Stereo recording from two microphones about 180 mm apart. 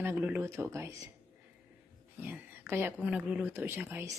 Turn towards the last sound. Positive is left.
turn(degrees=-10)  # may be behind; listen again after turning